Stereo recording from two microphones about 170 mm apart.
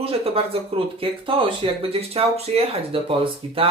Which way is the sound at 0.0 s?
35° right (ahead or behind).